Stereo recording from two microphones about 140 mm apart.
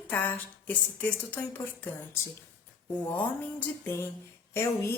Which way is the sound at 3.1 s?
15° left (ahead or behind).